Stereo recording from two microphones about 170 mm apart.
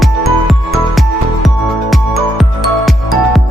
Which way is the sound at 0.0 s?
Centre (ahead or behind).